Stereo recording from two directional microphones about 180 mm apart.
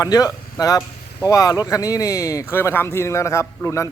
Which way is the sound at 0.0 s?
20° left (ahead or behind).